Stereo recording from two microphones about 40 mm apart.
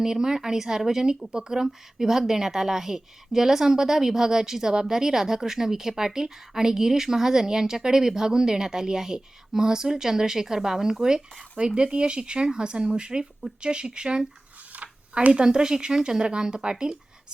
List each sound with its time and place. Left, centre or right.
0.0 s a woman's voice: centre
14.7 s a sound: right
15.3 s a woman's voice: centre